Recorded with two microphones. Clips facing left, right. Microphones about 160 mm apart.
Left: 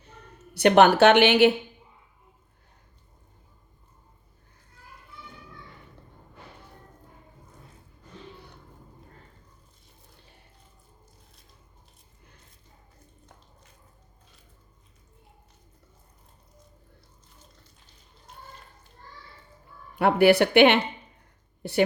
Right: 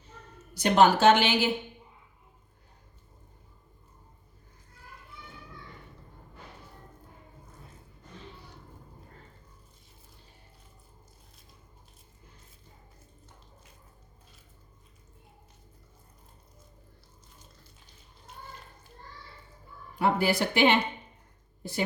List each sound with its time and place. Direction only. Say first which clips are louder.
0.0 s a woman's voice: left 2 dB; 65° left (ahead or behind)
20.0 s a woman's voice: left 7 dB; 65° left (ahead or behind)